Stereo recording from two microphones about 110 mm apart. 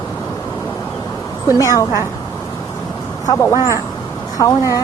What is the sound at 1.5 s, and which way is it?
Speech, 30° left (ahead or behind).